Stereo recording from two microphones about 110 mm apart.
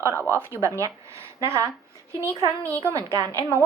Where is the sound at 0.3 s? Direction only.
25° right (ahead or behind).